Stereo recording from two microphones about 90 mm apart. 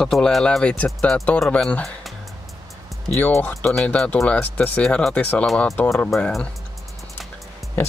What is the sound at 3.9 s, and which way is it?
Speech, 15° left (ahead or behind).